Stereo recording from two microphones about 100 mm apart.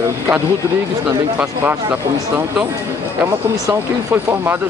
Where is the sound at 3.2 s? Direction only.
20° right (ahead or behind).